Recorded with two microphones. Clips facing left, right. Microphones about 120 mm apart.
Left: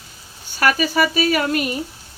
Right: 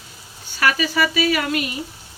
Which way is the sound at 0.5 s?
45° left (ahead or behind).